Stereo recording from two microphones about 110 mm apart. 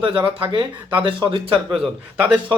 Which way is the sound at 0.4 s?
50° right (ahead or behind).